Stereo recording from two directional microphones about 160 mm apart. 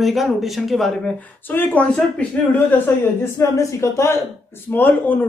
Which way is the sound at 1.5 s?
10° left (ahead or behind).